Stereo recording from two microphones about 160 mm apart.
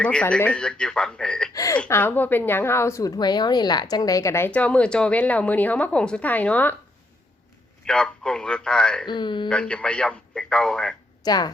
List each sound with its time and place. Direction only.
0.0 s speech: 5° left (ahead or behind)
1.5 s speech: 20° left (ahead or behind)
7.9 s speech: 5° left (ahead or behind)
9.0 s speech: 30° left (ahead or behind)
9.5 s speech: 5° left (ahead or behind)
11.2 s speech: 25° left (ahead or behind)